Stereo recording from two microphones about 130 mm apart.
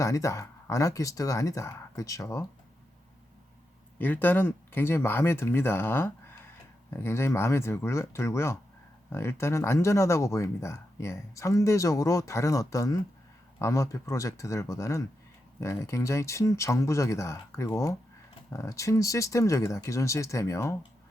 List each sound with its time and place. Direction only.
0.0 s speech: 25° left (ahead or behind)
3.9 s speech: 15° left (ahead or behind)